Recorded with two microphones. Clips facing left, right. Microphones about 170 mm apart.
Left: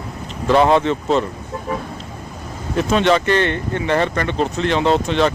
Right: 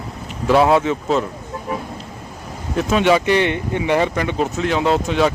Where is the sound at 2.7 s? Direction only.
Centre (ahead or behind).